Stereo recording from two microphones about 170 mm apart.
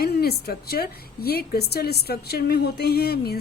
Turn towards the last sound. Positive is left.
turn(degrees=65)  # may be behind; listen again after turning